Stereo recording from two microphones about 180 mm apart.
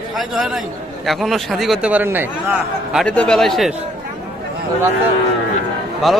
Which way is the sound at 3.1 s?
5° left (ahead or behind).